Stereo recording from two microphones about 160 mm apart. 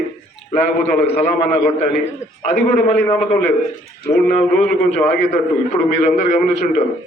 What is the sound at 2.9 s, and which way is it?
Speech, 10° left (ahead or behind).